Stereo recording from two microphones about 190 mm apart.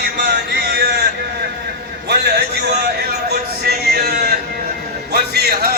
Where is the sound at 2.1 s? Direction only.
55° right (ahead or behind).